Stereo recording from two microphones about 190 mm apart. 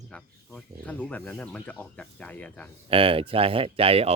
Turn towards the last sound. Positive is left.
turn(degrees=-30)  # may be behind; listen again after turning